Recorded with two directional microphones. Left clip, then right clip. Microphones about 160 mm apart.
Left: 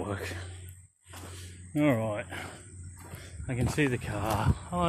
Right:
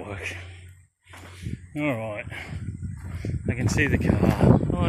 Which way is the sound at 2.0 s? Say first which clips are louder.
Right 1 dB; 30° left (ahead or behind).